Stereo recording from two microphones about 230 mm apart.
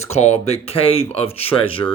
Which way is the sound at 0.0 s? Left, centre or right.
Left.